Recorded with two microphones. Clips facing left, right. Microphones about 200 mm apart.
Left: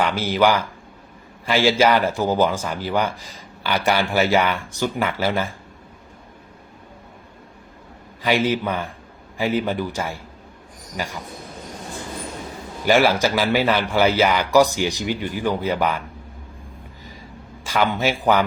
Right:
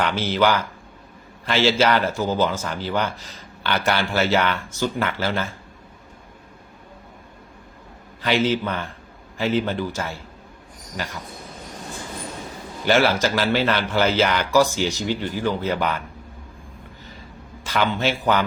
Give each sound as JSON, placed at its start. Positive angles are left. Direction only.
{"t": 0.0, "sound": "speech", "side_deg": 10}
{"t": 8.2, "sound": "speech", "side_deg": 10}
{"t": 12.8, "sound": "speech", "side_deg": 10}
{"t": 17.7, "sound": "speech", "side_deg": 10}